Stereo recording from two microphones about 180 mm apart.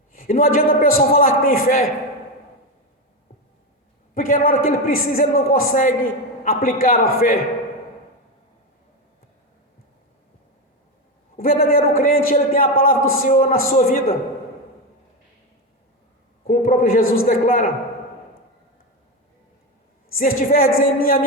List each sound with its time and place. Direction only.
0.1 s a man's voice: 50° left (ahead or behind)
4.1 s a man's voice: 50° left (ahead or behind)
11.3 s a man's voice: 55° left (ahead or behind)
16.5 s a man's voice: 50° left (ahead or behind)
20.1 s a man's voice: 55° left (ahead or behind)